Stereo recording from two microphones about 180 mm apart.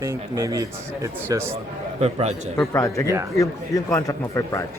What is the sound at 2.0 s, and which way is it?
Speech, 35° right (ahead or behind).